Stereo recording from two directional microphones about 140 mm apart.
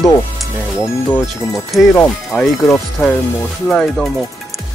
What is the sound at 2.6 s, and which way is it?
Speech, 20° left (ahead or behind).